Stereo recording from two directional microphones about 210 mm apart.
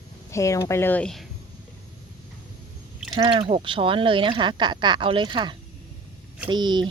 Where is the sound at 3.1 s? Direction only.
25° right (ahead or behind).